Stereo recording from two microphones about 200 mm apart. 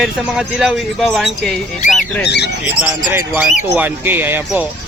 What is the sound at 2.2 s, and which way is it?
Speech, 55° left (ahead or behind).